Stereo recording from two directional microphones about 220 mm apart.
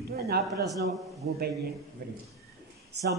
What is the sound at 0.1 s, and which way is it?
Speech, 45° right (ahead or behind).